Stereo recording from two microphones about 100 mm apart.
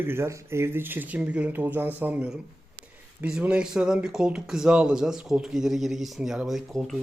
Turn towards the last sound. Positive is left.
turn(degrees=0)  # may be behind; listen again after turning